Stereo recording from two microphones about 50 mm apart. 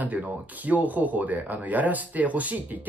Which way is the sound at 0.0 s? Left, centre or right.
Right.